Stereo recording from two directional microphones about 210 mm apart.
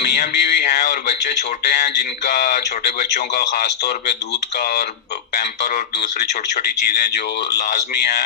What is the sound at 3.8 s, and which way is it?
Speech, 55° left (ahead or behind).